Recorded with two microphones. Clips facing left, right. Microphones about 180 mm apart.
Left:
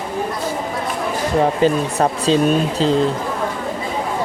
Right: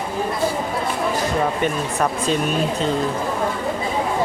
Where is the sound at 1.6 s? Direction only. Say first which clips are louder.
Left 5 dB; 30° left (ahead or behind).